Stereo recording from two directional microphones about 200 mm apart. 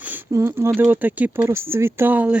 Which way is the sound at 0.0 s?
10° right (ahead or behind).